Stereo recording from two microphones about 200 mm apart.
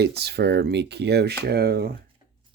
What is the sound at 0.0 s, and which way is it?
Speech, 55° right (ahead or behind).